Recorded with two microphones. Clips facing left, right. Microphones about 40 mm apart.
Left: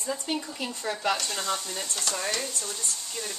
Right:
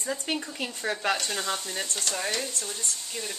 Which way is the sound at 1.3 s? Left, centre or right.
Centre.